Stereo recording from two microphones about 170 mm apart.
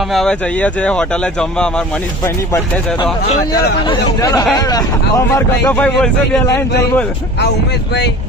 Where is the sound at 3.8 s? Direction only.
25° left (ahead or behind); by 6.4 s 5° left (ahead or behind).